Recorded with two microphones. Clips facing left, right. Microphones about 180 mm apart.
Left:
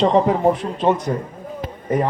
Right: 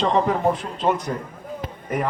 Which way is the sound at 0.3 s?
20° left (ahead or behind).